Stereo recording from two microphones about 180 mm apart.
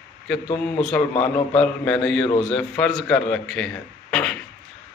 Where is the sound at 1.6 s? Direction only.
5° left (ahead or behind).